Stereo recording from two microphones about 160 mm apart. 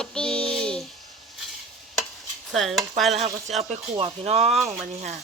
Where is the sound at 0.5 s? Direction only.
5° left (ahead or behind).